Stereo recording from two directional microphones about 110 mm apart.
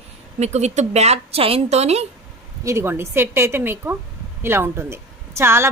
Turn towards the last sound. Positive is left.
turn(degrees=-25)  # may be behind; listen again after turning